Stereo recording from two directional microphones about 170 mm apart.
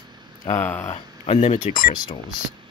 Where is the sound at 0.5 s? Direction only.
10° left (ahead or behind).